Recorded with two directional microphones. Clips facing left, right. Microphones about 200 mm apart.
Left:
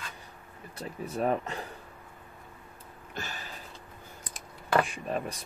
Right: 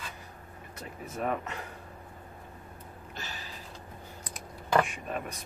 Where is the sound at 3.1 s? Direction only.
50° left (ahead or behind).